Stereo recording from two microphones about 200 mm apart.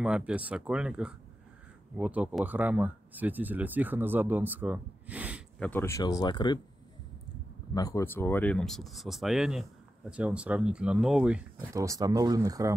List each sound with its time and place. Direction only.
0.0 s speech: 5° right (ahead or behind)
5.6 s speech: 10° left (ahead or behind)
7.7 s speech: 15° left (ahead or behind); by 11.4 s 5° right (ahead or behind)
11.7 s speech: 15° right (ahead or behind)